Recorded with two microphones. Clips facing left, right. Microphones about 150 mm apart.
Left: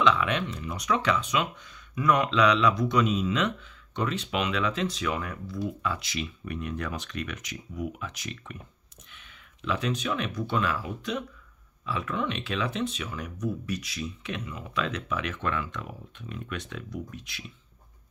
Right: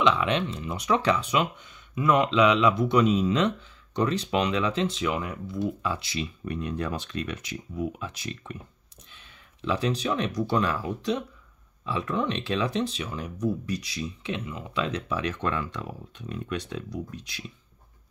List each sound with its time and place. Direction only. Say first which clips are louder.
0.0 s speech: right 1 dB; 25° right (ahead or behind)